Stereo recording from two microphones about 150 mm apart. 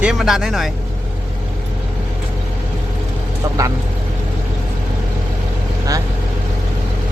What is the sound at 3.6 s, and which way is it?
Speech, 25° right (ahead or behind).